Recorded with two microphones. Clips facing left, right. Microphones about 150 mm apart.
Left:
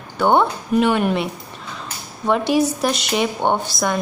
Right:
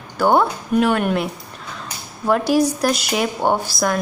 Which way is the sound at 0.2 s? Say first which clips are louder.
Even; 5° right (ahead or behind).